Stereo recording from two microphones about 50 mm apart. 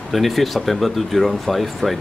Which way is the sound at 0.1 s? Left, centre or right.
Centre.